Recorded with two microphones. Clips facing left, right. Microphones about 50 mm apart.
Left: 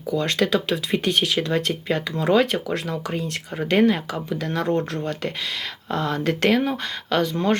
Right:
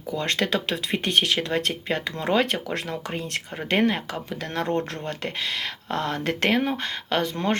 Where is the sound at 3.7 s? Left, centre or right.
Right.